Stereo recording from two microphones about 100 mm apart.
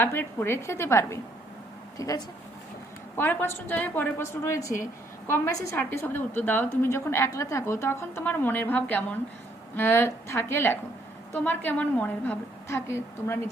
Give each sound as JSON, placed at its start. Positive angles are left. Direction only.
{"t": 0.0, "sound": "a woman's voice", "side_deg": 25}
{"t": 3.2, "sound": "a woman's voice", "side_deg": 20}
{"t": 5.7, "sound": "a woman's voice", "side_deg": 25}